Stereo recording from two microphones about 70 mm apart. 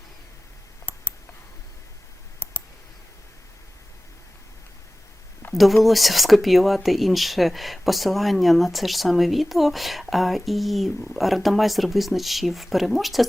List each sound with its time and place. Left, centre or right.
0.9 s clicking: left
5.5 s speech: centre